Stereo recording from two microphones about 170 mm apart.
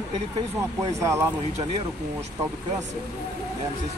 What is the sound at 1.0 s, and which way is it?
Speech, 15° right (ahead or behind).